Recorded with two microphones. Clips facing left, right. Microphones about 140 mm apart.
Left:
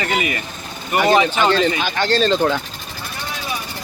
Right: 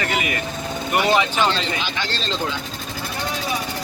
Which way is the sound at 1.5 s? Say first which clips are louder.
Left 7 dB; 50° left (ahead or behind).